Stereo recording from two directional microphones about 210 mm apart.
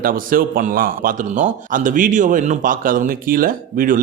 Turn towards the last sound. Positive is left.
turn(degrees=-40)  # may be behind; listen again after turning